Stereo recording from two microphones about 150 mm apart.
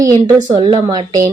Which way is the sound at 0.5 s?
40° right (ahead or behind).